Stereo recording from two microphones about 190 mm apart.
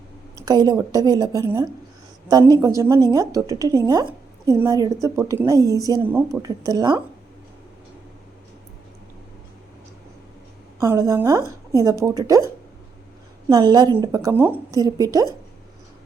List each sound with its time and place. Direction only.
0.3 s a woman's voice: 20° right (ahead or behind)
10.8 s a woman's voice: 15° right (ahead or behind)
13.5 s a woman's voice: 20° right (ahead or behind)